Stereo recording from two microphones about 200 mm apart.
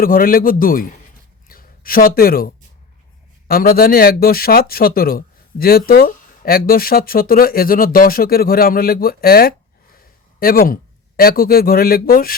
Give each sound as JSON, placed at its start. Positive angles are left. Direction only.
{"t": 0.0, "sound": "speech", "side_deg": 45}
{"t": 1.5, "sound": "a sound", "side_deg": 45}
{"t": 3.4, "sound": "speech", "side_deg": 50}